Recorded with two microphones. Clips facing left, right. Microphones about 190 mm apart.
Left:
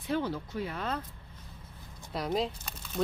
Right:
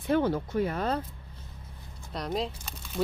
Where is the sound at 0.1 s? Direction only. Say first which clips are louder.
Right 6 dB; 50° right (ahead or behind).